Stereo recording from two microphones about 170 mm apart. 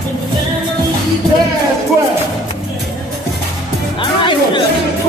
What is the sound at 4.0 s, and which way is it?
Music, 30° left (ahead or behind).